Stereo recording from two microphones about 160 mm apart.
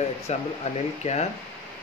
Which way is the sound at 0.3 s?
45° left (ahead or behind).